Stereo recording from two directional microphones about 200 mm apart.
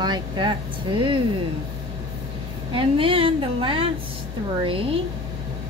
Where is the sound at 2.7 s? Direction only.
25° right (ahead or behind).